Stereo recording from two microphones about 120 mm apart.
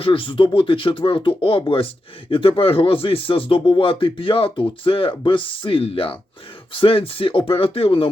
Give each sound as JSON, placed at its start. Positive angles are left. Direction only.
{"t": 0.0, "sound": "speech", "side_deg": 45}